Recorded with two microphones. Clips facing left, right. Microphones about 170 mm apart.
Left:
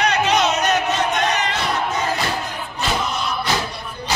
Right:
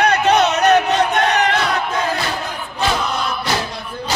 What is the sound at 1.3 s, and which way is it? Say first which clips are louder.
Battle cry: right 5 dB; 65° right (ahead or behind).